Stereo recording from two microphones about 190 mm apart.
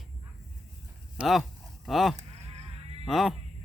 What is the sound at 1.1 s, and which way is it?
Speech, centre (ahead or behind).